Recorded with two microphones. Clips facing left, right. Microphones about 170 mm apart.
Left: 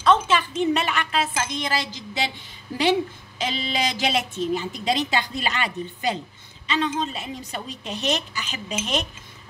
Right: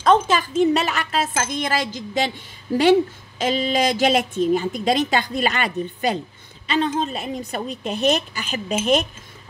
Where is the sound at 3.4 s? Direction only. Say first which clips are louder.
Right 6 dB; 45° right (ahead or behind).